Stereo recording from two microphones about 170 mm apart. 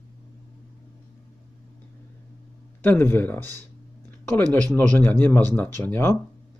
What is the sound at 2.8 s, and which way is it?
Speech, 10° left (ahead or behind).